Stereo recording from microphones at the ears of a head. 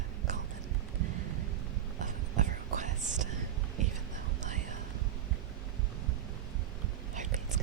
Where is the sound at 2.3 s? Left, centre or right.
Right.